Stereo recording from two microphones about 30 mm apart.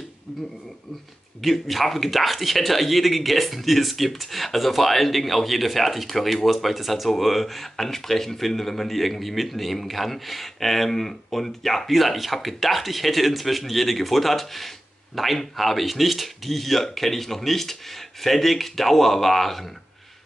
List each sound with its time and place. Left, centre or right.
1.4 s speech: centre